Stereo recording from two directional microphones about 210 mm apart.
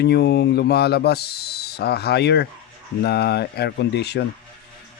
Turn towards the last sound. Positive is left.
turn(degrees=50)  # may be behind; listen again after turning